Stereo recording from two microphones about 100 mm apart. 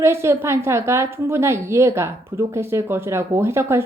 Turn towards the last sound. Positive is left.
turn(degrees=-25)  # may be behind; listen again after turning